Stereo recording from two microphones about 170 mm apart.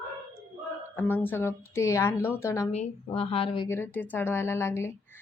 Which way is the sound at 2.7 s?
35° left (ahead or behind).